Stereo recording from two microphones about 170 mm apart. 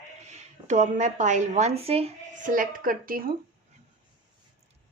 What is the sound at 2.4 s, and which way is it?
Speech, 55° right (ahead or behind).